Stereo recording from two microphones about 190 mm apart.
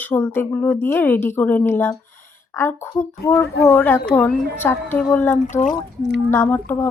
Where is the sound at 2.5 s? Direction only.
10° left (ahead or behind).